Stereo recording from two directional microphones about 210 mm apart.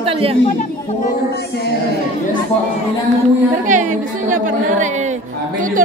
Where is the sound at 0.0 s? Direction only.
25° right (ahead or behind).